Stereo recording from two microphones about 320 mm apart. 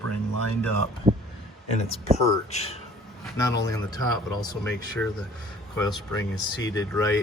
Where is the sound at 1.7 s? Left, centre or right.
Centre.